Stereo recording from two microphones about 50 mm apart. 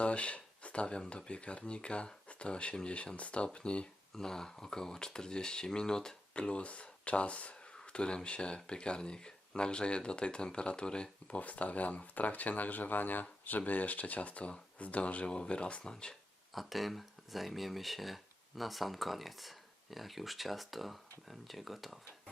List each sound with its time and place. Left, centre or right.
0.0 s speech: left
4.1 s speech: centre
11.3 s speech: left
16.5 s speech: centre